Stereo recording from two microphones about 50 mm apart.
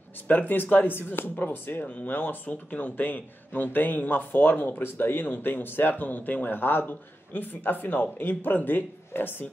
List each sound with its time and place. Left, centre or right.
0.3 s a man's voice: left
1.8 s a man's voice: left